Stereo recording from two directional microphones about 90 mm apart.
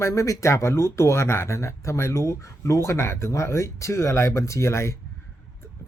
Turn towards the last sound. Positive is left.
turn(degrees=30)  # may be behind; listen again after turning